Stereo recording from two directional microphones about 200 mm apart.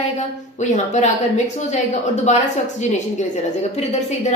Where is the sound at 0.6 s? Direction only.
35° left (ahead or behind).